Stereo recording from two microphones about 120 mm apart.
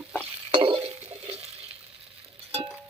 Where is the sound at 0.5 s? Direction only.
45° right (ahead or behind).